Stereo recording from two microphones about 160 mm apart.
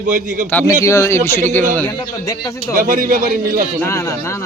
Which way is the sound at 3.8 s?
20° left (ahead or behind).